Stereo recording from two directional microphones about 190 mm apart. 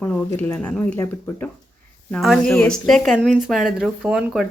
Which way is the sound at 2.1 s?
Centre (ahead or behind).